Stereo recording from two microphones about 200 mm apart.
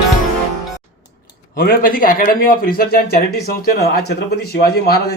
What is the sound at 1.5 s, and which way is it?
A man's voice, 45° left (ahead or behind).